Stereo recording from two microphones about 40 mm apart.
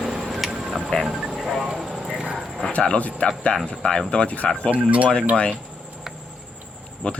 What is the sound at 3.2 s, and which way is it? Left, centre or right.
Speech, left.